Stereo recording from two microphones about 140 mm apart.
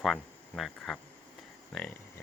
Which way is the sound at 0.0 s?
Centre (ahead or behind).